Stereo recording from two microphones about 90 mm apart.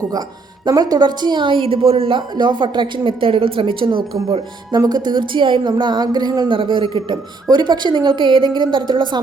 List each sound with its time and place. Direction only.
0.1 s a woman's voice: 50° right (ahead or behind); by 2.2 s 85° right
2.3 s a woman's voice: 55° right (ahead or behind); by 4.4 s 80° right
4.9 s a woman's voice: 55° right (ahead or behind)
6.6 s a woman's voice: 75° right (ahead or behind)